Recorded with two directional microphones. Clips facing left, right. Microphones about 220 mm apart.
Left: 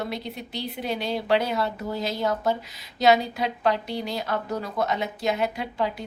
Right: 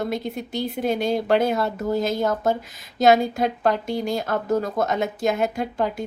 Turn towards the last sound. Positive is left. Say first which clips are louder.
# right 4 dB
turn(degrees=-45)  # may be behind; listen again after turning